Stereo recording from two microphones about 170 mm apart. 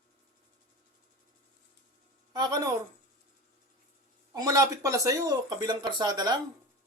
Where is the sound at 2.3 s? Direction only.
25° right (ahead or behind).